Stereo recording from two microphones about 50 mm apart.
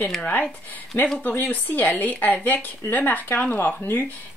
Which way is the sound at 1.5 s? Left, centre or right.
Left.